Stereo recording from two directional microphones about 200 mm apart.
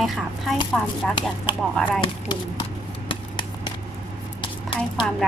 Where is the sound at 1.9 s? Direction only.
25° left (ahead or behind).